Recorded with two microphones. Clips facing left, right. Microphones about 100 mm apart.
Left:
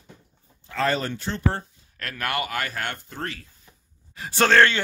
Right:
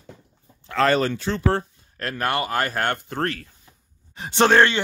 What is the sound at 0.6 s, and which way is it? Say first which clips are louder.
Speech: right 5 dB; 75° right (ahead or behind).